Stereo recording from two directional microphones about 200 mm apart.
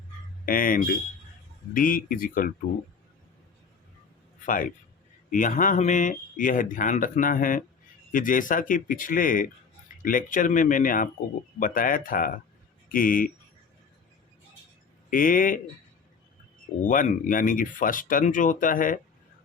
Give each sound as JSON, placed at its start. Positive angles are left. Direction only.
{"t": 0.4, "sound": "speech", "side_deg": 45}
{"t": 4.4, "sound": "speech", "side_deg": 45}
{"t": 15.1, "sound": "speech", "side_deg": 40}
{"t": 16.8, "sound": "speech", "side_deg": 40}